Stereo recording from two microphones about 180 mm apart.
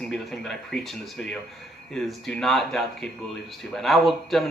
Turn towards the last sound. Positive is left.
turn(degrees=0)  # may be behind; listen again after turning